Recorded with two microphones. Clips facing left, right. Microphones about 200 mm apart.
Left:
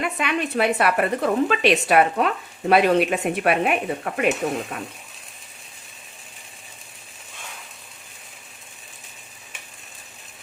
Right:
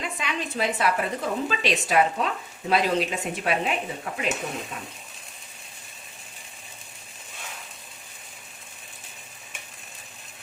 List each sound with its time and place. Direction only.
0.0 s a woman's voice: 60° left (ahead or behind)